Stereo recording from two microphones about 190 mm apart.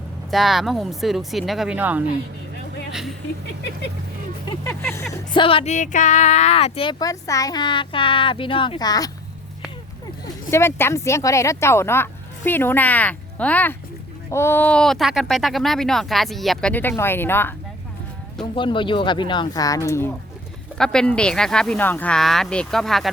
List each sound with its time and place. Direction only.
0.3 s speech: centre (ahead or behind)
4.6 s speech: 10° left (ahead or behind)
5.3 s speech: 25° left (ahead or behind)
10.5 s speech: 10° left (ahead or behind)
18.5 s speech: 25° left (ahead or behind)
20.7 s speech: 5° left (ahead or behind)